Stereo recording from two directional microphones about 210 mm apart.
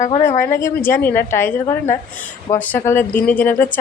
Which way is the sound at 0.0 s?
35° left (ahead or behind).